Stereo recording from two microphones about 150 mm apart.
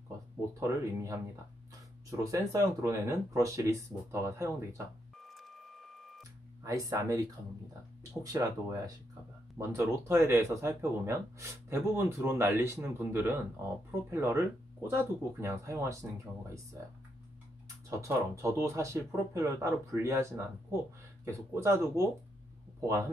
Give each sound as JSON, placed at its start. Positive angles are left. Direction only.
{"t": 0.6, "sound": "speech", "side_deg": -20}
{"t": 6.6, "sound": "speech", "side_deg": -20}
{"t": 17.8, "sound": "speech", "side_deg": -20}